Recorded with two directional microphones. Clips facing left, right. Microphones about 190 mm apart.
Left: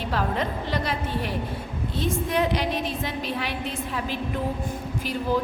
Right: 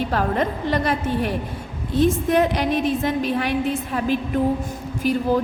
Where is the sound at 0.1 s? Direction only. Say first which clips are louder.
Right 5 dB; 50° right (ahead or behind).